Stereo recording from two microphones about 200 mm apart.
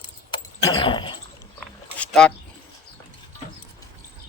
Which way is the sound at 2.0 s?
5° left (ahead or behind).